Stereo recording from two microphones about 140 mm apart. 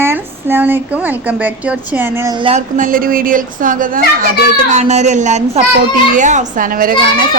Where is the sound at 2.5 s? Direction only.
80° right.